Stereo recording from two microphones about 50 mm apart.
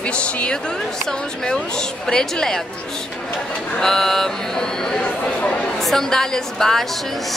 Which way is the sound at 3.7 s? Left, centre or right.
Centre.